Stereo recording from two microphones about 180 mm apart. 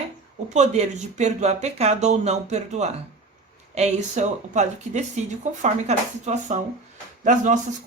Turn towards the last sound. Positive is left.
turn(degrees=-45)  # may be behind; listen again after turning